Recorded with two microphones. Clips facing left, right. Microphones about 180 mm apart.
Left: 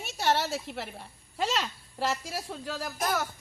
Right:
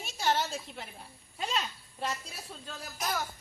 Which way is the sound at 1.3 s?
85° left.